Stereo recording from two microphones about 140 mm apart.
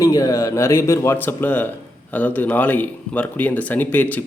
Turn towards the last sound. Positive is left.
turn(degrees=10)  # may be behind; listen again after turning